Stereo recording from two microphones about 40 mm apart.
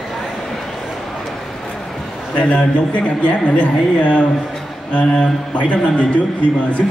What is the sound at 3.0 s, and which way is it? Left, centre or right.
A man's voice, left.